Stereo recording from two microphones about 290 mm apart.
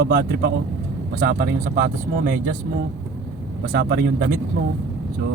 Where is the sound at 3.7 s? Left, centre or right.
Right.